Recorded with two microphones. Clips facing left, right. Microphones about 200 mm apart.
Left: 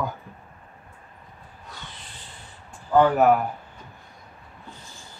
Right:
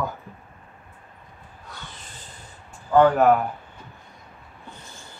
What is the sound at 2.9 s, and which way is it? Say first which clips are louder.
Speech: right 1 dB; 5° left (ahead or behind).